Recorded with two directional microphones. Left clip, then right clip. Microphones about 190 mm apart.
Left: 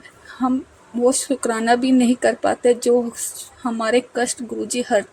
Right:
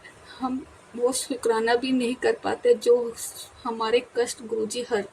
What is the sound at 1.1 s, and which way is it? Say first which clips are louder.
Speech: left 3 dB; 30° left (ahead or behind).